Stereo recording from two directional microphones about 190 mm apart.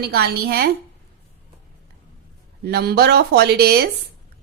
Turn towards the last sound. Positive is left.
turn(degrees=-55)  # may be behind; listen again after turning